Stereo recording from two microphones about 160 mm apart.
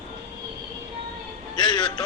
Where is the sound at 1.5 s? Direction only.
30° left (ahead or behind).